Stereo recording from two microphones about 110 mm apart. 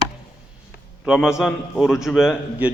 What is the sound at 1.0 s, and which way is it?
A man's voice, 5° right (ahead or behind).